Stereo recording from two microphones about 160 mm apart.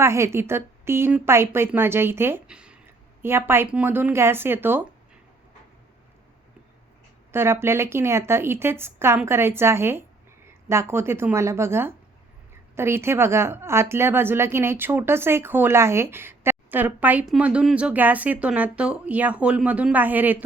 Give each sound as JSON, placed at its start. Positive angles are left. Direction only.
{"t": 0.0, "sound": "a woman's voice", "side_deg": -15}
{"t": 7.3, "sound": "a woman's voice", "side_deg": -15}